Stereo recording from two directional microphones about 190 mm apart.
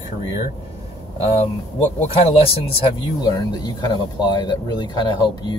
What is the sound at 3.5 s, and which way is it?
Speech, 20° left (ahead or behind).